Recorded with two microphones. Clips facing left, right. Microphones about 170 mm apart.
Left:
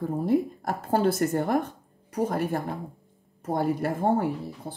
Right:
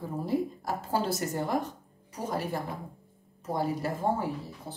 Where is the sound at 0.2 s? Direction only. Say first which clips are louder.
Left 4 dB; 55° left (ahead or behind).